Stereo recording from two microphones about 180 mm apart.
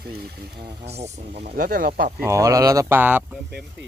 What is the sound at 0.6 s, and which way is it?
Speech, 35° right (ahead or behind).